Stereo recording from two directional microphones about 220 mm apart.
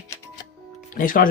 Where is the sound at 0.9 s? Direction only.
40° left (ahead or behind).